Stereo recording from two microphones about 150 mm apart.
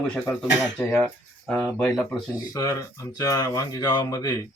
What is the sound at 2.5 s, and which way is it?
Speech, 20° left (ahead or behind).